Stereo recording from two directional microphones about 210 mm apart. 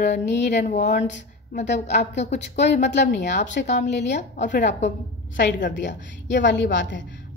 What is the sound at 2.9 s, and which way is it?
Speech, 55° left (ahead or behind).